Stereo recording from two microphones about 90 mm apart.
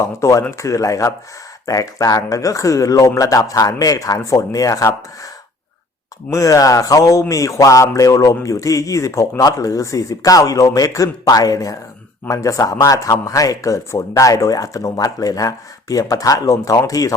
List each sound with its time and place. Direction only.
0.0 s speech: 35° left (ahead or behind)
6.3 s speech: 40° left (ahead or behind)